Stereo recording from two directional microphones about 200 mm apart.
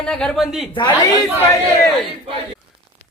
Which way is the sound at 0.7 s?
20° left (ahead or behind).